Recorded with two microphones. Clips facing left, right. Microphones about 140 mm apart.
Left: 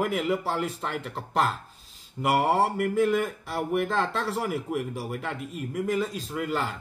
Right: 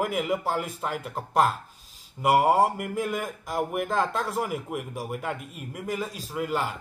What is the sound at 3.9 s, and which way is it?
Speech, 10° right (ahead or behind).